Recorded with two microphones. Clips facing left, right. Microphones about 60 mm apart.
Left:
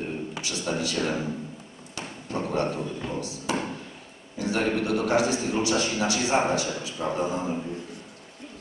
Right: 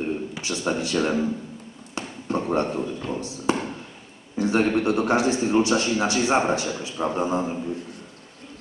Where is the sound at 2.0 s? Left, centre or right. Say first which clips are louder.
Right 4 dB; right.